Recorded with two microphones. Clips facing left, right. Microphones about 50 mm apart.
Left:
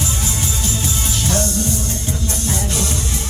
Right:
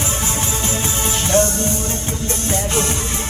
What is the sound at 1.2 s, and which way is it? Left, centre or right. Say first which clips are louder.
Music: right 4 dB; right.